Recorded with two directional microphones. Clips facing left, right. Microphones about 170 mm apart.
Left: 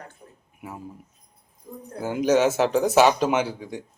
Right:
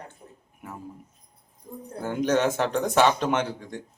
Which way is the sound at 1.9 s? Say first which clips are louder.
Left 3 dB; 5° left (ahead or behind).